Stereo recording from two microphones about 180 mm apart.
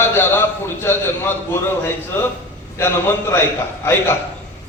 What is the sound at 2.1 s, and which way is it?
Speech, 10° left (ahead or behind).